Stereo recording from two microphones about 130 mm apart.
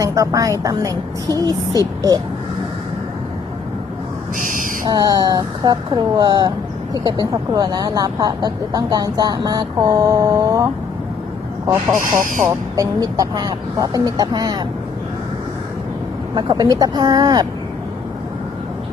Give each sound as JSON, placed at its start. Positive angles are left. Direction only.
{"t": 0.0, "sound": "speech", "side_deg": -25}
{"t": 4.4, "sound": "owl", "side_deg": -90}
{"t": 4.9, "sound": "speech", "side_deg": -30}
{"t": 16.3, "sound": "speech", "side_deg": -30}